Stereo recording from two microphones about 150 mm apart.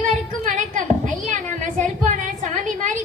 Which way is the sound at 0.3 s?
60° right (ahead or behind).